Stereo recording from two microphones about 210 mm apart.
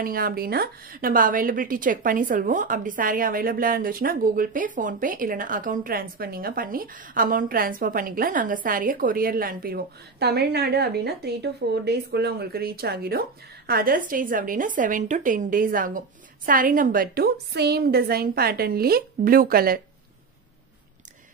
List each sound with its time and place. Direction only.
0.0 s a woman's voice: 45° right (ahead or behind)